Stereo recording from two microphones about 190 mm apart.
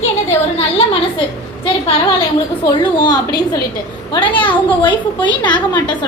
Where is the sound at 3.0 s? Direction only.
20° left (ahead or behind).